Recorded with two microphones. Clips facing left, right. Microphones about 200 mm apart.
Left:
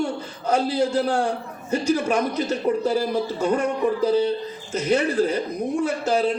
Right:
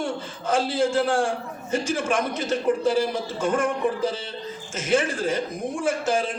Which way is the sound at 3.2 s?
50° right (ahead or behind).